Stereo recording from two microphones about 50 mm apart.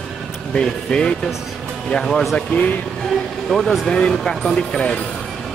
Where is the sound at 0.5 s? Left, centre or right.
Centre.